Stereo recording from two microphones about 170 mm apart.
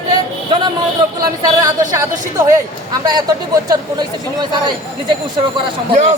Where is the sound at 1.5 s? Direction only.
20° right (ahead or behind).